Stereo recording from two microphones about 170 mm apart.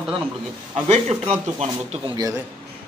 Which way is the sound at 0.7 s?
40° right (ahead or behind).